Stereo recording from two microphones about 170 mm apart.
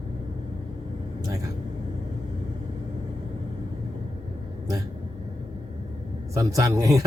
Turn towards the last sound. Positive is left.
turn(degrees=-20)  # may be behind; listen again after turning